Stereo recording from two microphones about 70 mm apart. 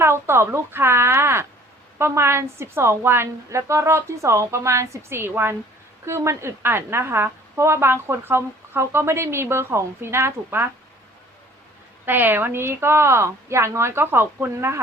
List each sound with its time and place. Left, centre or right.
0.0 s a woman's voice: right
12.0 s a woman's voice: right